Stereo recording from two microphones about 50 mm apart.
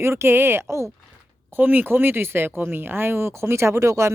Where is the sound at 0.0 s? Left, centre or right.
Right.